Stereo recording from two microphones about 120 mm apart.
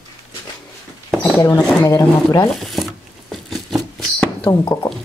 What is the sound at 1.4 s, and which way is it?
Speech, 30° left (ahead or behind).